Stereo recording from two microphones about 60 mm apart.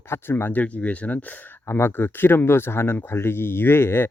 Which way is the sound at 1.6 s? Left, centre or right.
Left.